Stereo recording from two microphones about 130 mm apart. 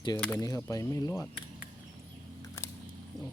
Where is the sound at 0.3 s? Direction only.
25° left (ahead or behind).